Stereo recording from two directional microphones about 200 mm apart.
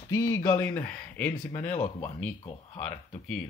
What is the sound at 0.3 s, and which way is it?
Speech, 15° left (ahead or behind).